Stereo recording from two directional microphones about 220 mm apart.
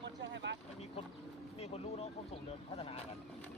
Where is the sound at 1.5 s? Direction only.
25° left (ahead or behind).